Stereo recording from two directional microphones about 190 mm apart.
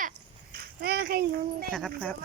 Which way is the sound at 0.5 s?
55° right (ahead or behind).